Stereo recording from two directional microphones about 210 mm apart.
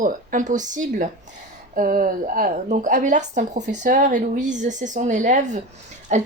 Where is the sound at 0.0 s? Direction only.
40° right (ahead or behind).